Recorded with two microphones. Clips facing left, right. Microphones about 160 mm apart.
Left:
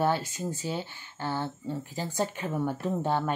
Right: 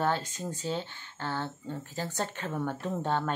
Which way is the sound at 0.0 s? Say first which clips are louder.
Left 3 dB; 10° left (ahead or behind).